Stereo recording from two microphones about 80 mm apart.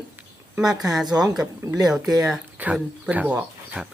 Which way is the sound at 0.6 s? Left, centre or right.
Centre.